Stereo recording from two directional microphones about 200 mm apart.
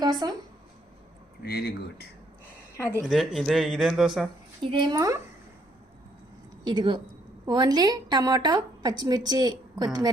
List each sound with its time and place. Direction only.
0.0 s speech: 20° right (ahead or behind)
1.4 s speech: 50° left (ahead or behind)
2.9 s speech: 5° right (ahead or behind)
4.6 s a woman's voice: 25° right (ahead or behind)
6.7 s a woman's voice: 20° right (ahead or behind)